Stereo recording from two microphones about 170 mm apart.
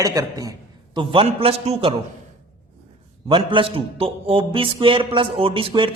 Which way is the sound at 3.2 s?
30° right (ahead or behind).